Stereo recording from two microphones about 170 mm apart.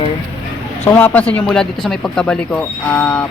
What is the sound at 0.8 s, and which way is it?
Speech, 10° left (ahead or behind).